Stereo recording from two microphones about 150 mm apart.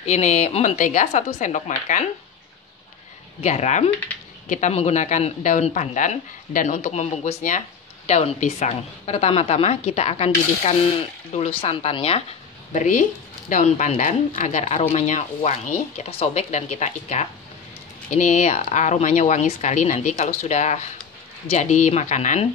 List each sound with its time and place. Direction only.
0.0 s a woman's voice: 50° left (ahead or behind)
3.3 s a woman's voice: 45° left (ahead or behind)
12.7 s a woman's voice: 55° left (ahead or behind)